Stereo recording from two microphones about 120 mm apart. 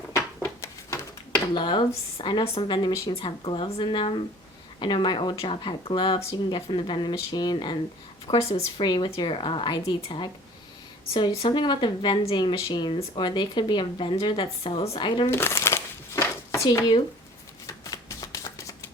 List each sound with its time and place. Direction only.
1.5 s speech: 40° left (ahead or behind)
8.3 s a woman's voice: 55° left (ahead or behind)
8.8 s speech: 40° left (ahead or behind)
15.3 s crumpling: 20° left (ahead or behind)
17.9 s shuffling cards: 30° left (ahead or behind)